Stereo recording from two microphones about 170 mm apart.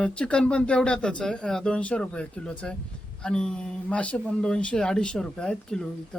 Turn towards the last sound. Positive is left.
turn(degrees=5)  # may be behind; listen again after turning